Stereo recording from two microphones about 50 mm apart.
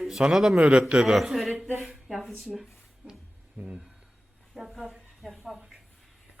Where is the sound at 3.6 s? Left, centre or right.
Right.